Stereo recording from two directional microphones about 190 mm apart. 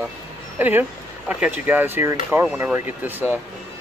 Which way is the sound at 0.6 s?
10° right (ahead or behind).